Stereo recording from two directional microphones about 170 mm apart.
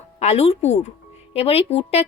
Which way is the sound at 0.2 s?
40° left (ahead or behind).